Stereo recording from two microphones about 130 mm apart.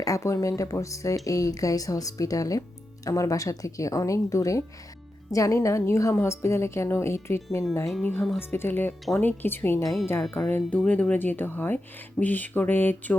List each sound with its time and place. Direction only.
0.0 s speech: 25° left (ahead or behind)
9.8 s speech: centre (ahead or behind)